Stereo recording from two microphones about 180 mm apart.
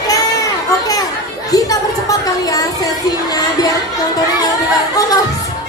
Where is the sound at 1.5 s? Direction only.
20° left (ahead or behind).